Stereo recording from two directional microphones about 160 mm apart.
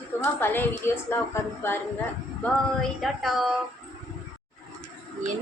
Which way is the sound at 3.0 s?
Centre (ahead or behind).